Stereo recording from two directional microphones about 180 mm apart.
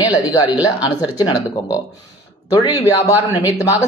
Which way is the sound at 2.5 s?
20° left (ahead or behind).